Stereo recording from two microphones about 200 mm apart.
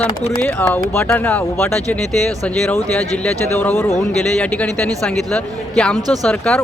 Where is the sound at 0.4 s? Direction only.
10° left (ahead or behind).